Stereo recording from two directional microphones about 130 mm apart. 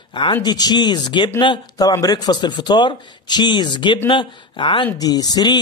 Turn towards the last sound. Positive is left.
turn(degrees=30)  # may be behind; listen again after turning